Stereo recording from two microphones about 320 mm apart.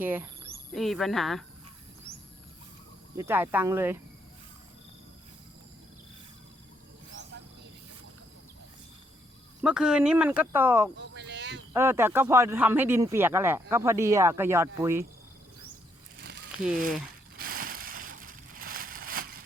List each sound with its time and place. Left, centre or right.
0.0 s cricket: centre
0.7 s speech: centre
3.2 s speech: centre
9.6 s speech: centre
10.9 s a sound: right
11.7 s speech: centre
16.1 s a sound: right